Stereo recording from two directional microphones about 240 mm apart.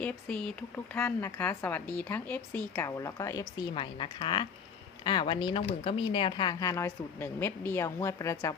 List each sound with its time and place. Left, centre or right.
0.0 s speech: centre